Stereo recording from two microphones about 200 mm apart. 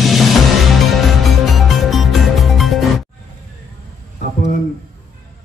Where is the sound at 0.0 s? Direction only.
Centre (ahead or behind).